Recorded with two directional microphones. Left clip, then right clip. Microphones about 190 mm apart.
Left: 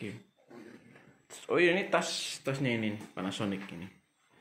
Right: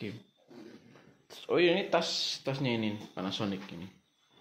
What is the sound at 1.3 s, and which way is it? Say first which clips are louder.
Speech: even; 5° right (ahead or behind).